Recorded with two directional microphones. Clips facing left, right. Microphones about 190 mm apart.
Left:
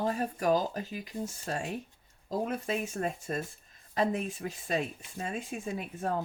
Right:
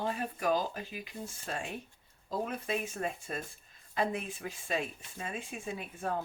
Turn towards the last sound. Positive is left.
turn(degrees=40)  # may be behind; listen again after turning